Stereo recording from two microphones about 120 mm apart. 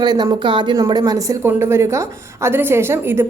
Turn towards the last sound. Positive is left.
turn(degrees=-20)  # may be behind; listen again after turning